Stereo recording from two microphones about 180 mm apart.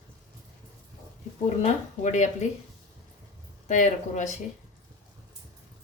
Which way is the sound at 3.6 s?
45° left (ahead or behind).